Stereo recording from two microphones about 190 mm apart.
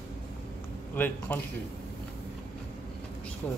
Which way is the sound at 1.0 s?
10° left (ahead or behind).